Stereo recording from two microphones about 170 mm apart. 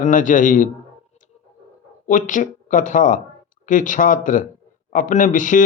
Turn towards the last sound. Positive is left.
turn(degrees=50)  # may be behind; listen again after turning